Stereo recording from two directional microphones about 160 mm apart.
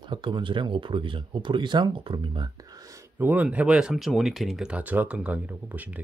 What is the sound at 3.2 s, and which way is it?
Speech, 10° right (ahead or behind).